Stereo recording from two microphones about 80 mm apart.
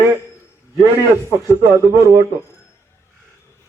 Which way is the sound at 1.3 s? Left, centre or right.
Right.